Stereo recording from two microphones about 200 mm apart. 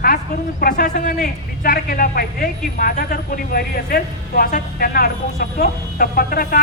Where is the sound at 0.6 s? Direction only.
45° left (ahead or behind).